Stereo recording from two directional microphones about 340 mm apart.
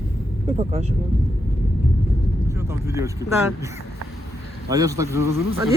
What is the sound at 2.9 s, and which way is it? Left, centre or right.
Speech, centre.